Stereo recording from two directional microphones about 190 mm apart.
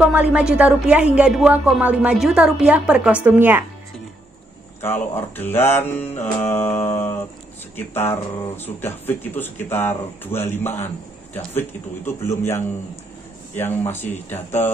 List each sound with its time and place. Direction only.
0.1 s a woman's voice: 5° right (ahead or behind)
4.8 s speech: 10° left (ahead or behind)
12.1 s speech: 15° left (ahead or behind)